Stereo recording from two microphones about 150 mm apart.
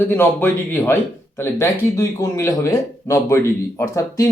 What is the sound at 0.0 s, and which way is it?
Speech, 15° left (ahead or behind).